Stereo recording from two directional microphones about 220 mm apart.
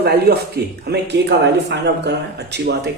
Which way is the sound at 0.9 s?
45° right (ahead or behind).